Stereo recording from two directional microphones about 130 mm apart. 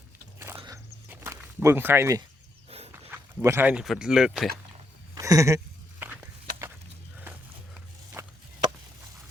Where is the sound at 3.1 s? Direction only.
15° right (ahead or behind).